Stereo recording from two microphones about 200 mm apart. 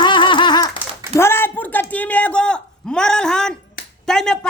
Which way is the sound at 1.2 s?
10° left (ahead or behind).